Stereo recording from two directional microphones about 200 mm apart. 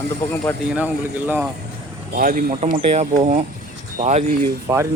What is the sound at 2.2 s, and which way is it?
Speech, 45° right (ahead or behind).